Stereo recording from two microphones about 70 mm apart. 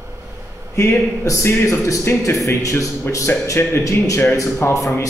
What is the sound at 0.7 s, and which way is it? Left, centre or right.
A man's voice, left.